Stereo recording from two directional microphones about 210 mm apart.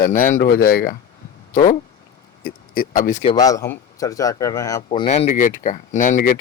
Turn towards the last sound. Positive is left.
turn(degrees=35)  # may be behind; listen again after turning